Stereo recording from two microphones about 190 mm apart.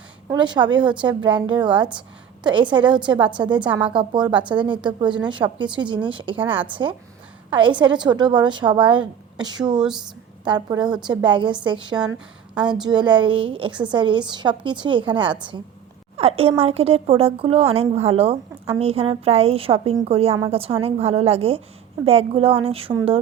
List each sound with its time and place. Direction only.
0.3 s a woman's voice: 25° right (ahead or behind)
6.3 s speech: 10° right (ahead or behind)
7.5 s a woman's voice: 25° right (ahead or behind)
9.7 s speech: 5° right (ahead or behind)
10.4 s a woman's voice: 25° right (ahead or behind)
10.8 s speech: 5° right (ahead or behind)
11.1 s a woman's voice: 25° right (ahead or behind)
12.5 s a woman's voice: 5° right (ahead or behind)
12.8 s a woman's voice: 25° right (ahead or behind)